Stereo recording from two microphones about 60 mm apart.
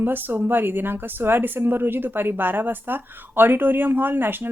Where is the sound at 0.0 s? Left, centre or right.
Right.